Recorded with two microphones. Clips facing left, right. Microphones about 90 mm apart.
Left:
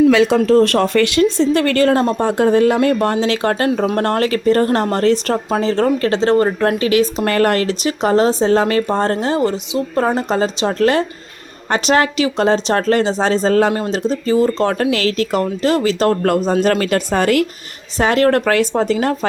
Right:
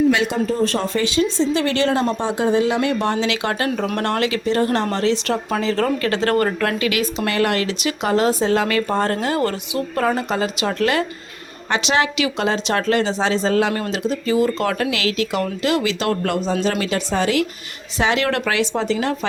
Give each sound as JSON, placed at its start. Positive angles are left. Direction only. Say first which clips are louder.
{"t": 0.3, "sound": "a woman's voice", "louder": "left 8 dB", "side_deg": 90}
{"t": 9.4, "sound": "speech", "louder": "left 4 dB", "side_deg": 20}
{"t": 10.0, "sound": "a woman's voice", "louder": "left 4 dB", "side_deg": 30}